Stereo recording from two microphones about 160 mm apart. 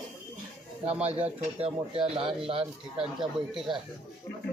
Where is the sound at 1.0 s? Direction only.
40° right (ahead or behind).